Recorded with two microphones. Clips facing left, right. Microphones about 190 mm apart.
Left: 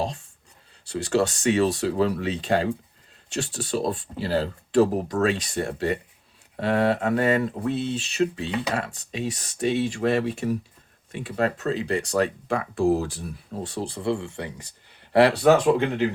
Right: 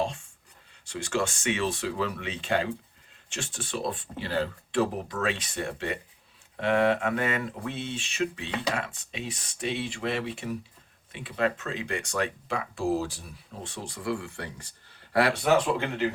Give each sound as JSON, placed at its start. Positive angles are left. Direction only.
{"t": 0.9, "sound": "speech", "side_deg": 35}
{"t": 15.2, "sound": "speech", "side_deg": 40}